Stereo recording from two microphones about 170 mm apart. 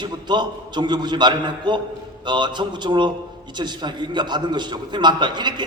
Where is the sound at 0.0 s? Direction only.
25° right (ahead or behind).